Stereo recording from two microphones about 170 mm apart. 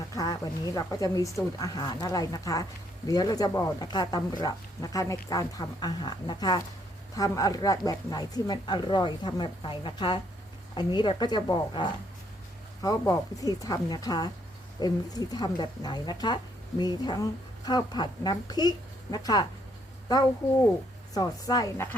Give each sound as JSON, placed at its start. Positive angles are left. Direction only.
{"t": 0.2, "sound": "speech", "side_deg": 20}
{"t": 21.1, "sound": "speech", "side_deg": 20}